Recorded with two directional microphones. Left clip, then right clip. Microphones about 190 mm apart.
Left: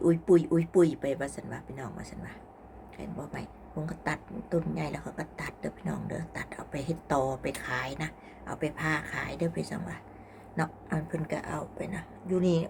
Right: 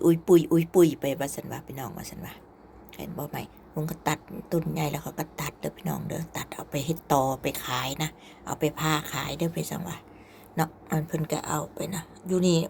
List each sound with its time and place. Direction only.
0.0 s a woman's voice: 15° right (ahead or behind)